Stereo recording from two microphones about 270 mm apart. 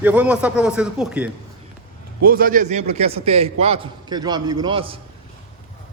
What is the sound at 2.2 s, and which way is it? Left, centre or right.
A man's voice, right.